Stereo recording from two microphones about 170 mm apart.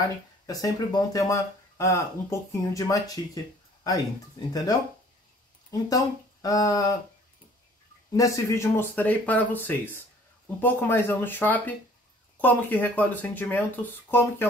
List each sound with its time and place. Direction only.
0.0 s speech: 20° left (ahead or behind)
6.4 s speech: 20° left (ahead or behind)
8.1 s speech: 20° left (ahead or behind)